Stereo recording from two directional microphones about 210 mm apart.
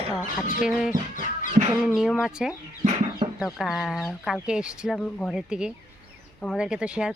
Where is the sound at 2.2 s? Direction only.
5° right (ahead or behind).